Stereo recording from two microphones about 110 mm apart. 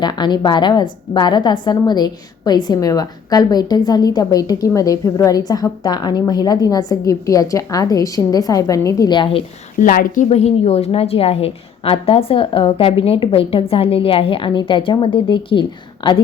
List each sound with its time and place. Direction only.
0.0 s a woman's voice: 40° left (ahead or behind)
9.1 s a woman's voice: 50° left (ahead or behind)
10.2 s a woman's voice: 75° left (ahead or behind); by 16.2 s 50° left (ahead or behind)